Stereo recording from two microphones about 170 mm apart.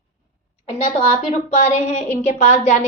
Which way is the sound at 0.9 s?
40° left (ahead or behind).